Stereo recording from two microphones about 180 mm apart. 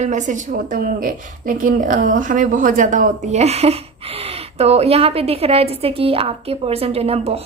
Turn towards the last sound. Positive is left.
turn(degrees=-35)  # may be behind; listen again after turning